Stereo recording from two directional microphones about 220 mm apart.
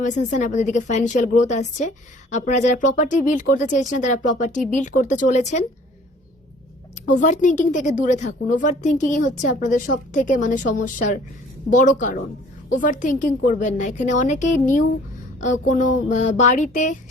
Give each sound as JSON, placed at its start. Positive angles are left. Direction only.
{"t": 0.0, "sound": "a woman's voice", "side_deg": 35}
{"t": 7.2, "sound": "a woman's voice", "side_deg": 35}